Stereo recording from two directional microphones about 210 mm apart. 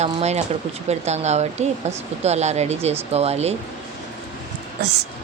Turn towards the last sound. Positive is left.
turn(degrees=-50)  # may be behind; listen again after turning